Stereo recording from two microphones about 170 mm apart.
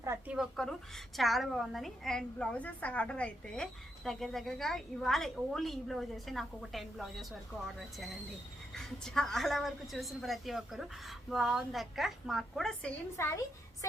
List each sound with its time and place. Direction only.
0.0 s speech: 15° right (ahead or behind)
0.3 s a woman's voice: centre (ahead or behind)
8.7 s a woman's voice: 5° left (ahead or behind)
13.1 s a woman's voice: 15° left (ahead or behind)